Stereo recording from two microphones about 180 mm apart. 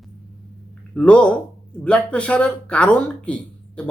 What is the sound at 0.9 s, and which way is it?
Speech, 5° left (ahead or behind).